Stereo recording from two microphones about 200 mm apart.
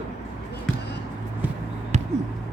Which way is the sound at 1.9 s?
35° right (ahead or behind).